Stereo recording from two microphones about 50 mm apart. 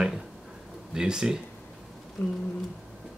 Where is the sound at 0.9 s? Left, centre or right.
Centre.